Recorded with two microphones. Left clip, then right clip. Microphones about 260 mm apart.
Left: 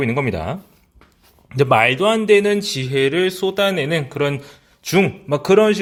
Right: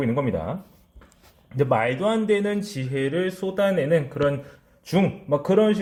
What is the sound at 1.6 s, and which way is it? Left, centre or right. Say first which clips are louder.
Speech: left 7 dB; left.